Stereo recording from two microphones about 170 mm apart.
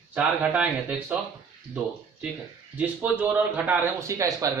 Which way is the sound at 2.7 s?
10° right (ahead or behind).